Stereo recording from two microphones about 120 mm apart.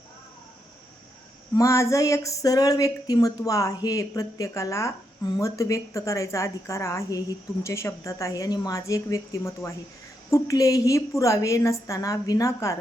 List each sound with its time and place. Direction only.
1.5 s speech: 25° left (ahead or behind)